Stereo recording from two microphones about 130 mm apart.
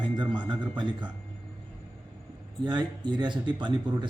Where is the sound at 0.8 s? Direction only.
35° right (ahead or behind).